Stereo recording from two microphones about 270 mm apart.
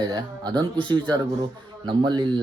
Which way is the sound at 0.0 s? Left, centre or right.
Centre.